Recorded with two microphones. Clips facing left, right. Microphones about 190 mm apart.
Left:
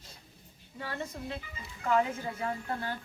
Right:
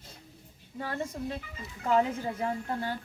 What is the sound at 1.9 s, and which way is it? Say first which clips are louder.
Speech: right 2 dB; 30° right (ahead or behind).